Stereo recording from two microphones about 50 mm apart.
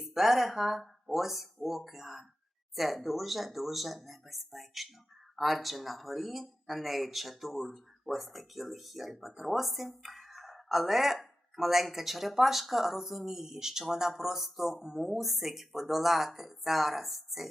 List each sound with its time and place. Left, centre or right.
0.0 s speech: centre